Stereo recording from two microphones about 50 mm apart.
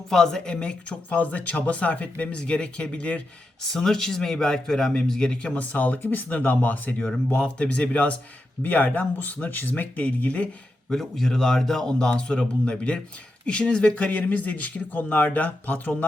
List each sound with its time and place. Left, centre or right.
0.1 s a man's voice: centre
3.7 s a man's voice: centre
5.5 s speech: left
10.8 s a man's voice: centre; by 16.0 s left